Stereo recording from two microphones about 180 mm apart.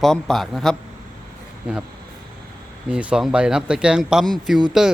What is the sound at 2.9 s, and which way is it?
Speech, 5° right (ahead or behind).